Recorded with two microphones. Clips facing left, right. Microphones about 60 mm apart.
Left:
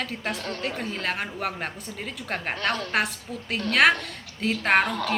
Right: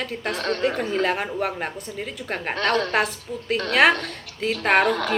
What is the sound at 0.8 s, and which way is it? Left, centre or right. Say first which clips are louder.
A woman's voice: right 6 dB; centre.